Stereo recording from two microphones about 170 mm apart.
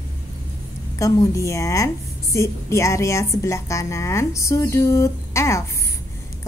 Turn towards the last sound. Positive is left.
turn(degrees=15)  # may be behind; listen again after turning